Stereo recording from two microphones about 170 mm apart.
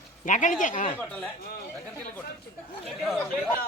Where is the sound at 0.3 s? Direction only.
50° left (ahead or behind).